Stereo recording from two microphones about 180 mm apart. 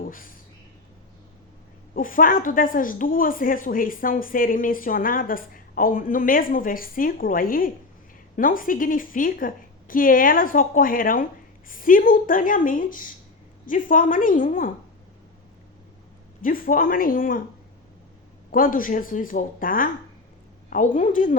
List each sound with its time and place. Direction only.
0.0 s a sound: 50° left (ahead or behind)
2.0 s a woman's voice: 50° left (ahead or behind)
16.4 s a woman's voice: 50° left (ahead or behind)
18.5 s a woman's voice: 50° left (ahead or behind)